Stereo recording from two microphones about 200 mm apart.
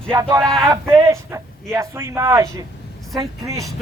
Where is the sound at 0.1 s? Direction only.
15° right (ahead or behind).